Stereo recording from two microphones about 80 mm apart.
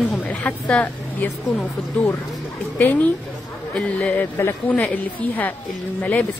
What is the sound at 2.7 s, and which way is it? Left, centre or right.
A woman's voice, left.